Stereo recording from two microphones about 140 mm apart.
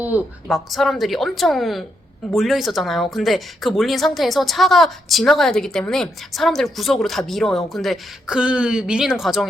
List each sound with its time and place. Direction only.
0.5 s a woman's voice: centre (ahead or behind)